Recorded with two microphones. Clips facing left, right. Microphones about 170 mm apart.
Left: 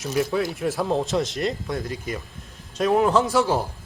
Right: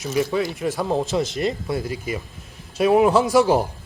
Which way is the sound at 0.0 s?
Centre (ahead or behind).